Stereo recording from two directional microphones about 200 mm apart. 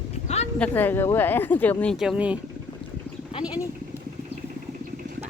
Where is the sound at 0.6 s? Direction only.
10° left (ahead or behind); by 2.4 s 5° right (ahead or behind).